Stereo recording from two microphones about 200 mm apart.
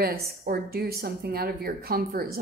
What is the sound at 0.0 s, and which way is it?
Speech, 50° right (ahead or behind).